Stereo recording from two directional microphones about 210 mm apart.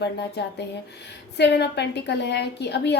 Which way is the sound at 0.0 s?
55° left (ahead or behind).